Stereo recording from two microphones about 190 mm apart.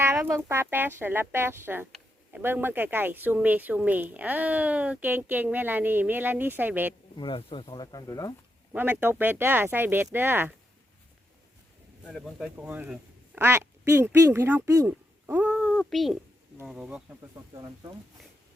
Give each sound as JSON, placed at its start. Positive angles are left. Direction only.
{"t": 0.0, "sound": "speech", "side_deg": -15}
{"t": 7.2, "sound": "speech", "side_deg": 25}
{"t": 8.7, "sound": "speech", "side_deg": -10}
{"t": 12.0, "sound": "speech", "side_deg": 0}
{"t": 17.5, "sound": "speech", "side_deg": -20}